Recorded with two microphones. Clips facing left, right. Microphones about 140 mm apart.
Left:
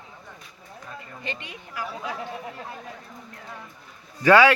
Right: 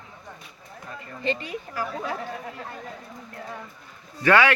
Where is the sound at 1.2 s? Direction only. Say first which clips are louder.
Right 10 dB; 35° right (ahead or behind).